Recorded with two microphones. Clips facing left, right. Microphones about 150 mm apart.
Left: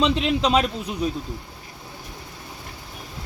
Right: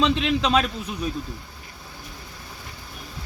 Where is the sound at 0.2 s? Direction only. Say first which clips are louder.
Left 1 dB; 20° left (ahead or behind).